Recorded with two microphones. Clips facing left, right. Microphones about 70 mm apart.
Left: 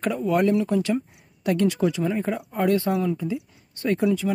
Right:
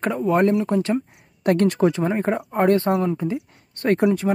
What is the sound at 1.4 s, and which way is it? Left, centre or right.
Speech, right.